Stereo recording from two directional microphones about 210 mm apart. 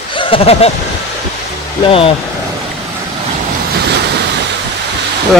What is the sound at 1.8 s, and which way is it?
Speech, 25° left (ahead or behind).